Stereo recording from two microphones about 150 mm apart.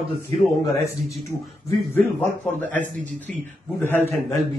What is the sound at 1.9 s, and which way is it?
A man's voice, 10° left (ahead or behind).